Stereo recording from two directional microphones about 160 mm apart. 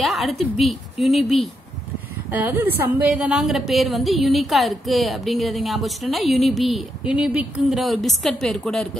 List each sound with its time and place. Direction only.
0.0 s a woman's voice: centre (ahead or behind)
2.3 s a woman's voice: 10° right (ahead or behind)